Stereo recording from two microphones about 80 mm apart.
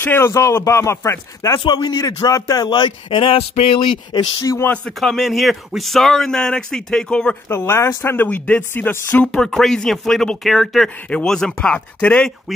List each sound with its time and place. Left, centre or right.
0.0 s speech: left
1.6 s speech: left
4.4 s speech: left
4.8 s speech: centre
7.4 s speech: left
9.3 s speech: centre